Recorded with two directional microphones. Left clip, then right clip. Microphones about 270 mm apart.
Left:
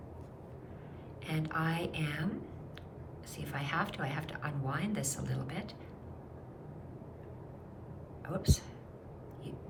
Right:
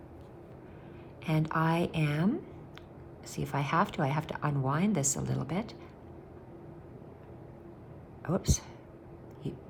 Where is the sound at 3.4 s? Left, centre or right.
Centre.